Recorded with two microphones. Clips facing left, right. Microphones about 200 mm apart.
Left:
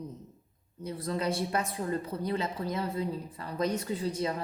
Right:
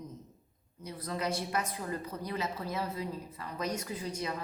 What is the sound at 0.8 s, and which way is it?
A woman's voice, 30° left (ahead or behind).